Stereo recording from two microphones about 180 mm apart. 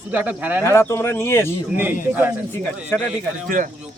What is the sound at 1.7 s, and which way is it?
Speech, 10° right (ahead or behind).